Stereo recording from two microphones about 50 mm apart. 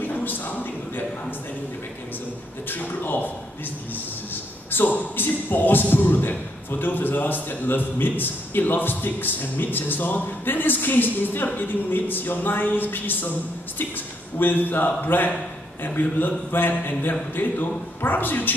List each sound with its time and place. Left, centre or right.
0.0 s a sound: left
2.7 s a man's voice: left
4.6 s a man's voice: left
14.4 s a man's voice: left